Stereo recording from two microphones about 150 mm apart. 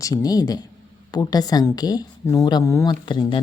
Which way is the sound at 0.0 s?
25° left (ahead or behind).